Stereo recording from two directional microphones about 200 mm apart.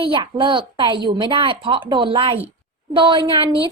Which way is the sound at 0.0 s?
25° right (ahead or behind).